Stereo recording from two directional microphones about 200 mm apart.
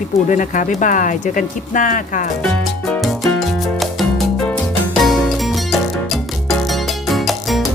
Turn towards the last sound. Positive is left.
turn(degrees=0)  # may be behind; listen again after turning